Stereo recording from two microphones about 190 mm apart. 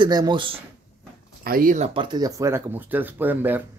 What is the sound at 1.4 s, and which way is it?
Speech, 45° right (ahead or behind).